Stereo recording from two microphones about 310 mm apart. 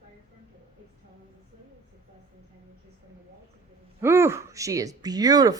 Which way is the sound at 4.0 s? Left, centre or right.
Centre.